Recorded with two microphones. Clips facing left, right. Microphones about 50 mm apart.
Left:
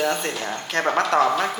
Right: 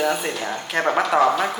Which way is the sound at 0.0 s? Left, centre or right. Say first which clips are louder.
Right 1 dB; centre.